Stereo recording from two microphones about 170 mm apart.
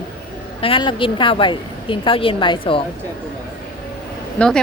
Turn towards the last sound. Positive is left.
turn(degrees=5)  # may be behind; listen again after turning